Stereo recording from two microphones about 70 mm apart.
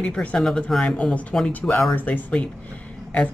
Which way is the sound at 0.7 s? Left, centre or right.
Centre.